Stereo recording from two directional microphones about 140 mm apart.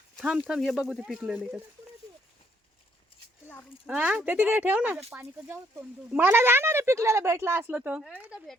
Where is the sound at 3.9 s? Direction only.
10° right (ahead or behind).